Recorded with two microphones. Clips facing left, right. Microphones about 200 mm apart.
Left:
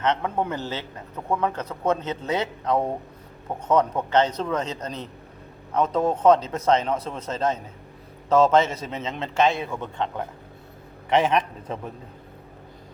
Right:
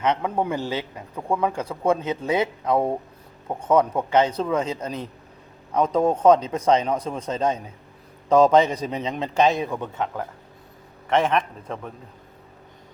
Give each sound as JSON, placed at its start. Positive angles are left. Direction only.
{"t": 0.0, "sound": "a man's voice", "side_deg": -10}
{"t": 11.2, "sound": "a man's voice", "side_deg": 5}